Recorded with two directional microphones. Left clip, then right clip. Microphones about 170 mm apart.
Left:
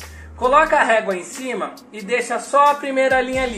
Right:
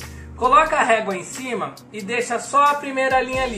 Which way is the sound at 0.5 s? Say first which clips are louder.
Left 2 dB; 55° right (ahead or behind).